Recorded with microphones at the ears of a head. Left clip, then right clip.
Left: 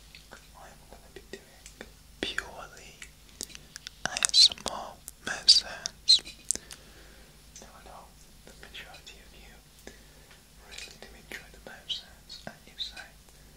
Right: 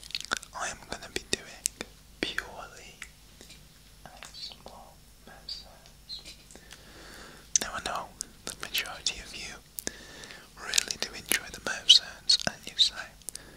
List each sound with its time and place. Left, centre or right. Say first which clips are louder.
0.1 s whispering: right 18 dB; right
2.2 s whispering: even; centre
3.3 s whispering: left 11 dB; left
7.1 s whispering: right 19 dB; right